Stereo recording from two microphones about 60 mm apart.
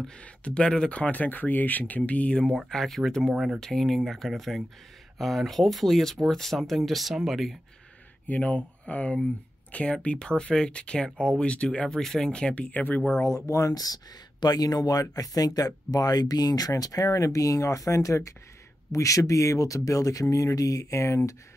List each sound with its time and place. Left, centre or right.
0.2 s speech: centre
1.1 s speech: left
2.5 s speech: centre
8.3 s speech: left
12.0 s speech: centre
12.3 s speech: centre
13.2 s speech: left